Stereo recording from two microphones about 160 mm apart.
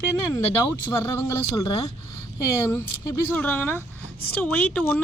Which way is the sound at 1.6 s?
35° left (ahead or behind).